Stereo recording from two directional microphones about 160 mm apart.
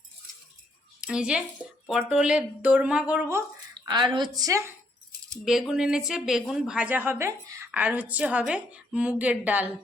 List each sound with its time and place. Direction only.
1.0 s a woman's voice: 5° right (ahead or behind)
3.8 s a woman's voice: 30° right (ahead or behind)
5.5 s a woman's voice: 5° right (ahead or behind)